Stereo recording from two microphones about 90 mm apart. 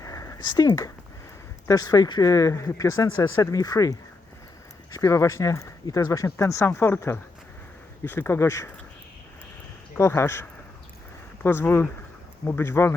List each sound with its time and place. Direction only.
0.0 s a sound: 40° left (ahead or behind)
0.3 s speech: 50° left (ahead or behind); by 8.7 s 30° left (ahead or behind)
10.0 s speech: 30° left (ahead or behind)
11.4 s speech: 25° left (ahead or behind)